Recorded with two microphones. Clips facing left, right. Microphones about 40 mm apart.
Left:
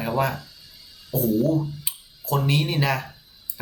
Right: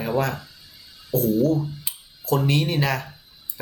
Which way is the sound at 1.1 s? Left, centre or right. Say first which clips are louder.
Right 1 dB; centre.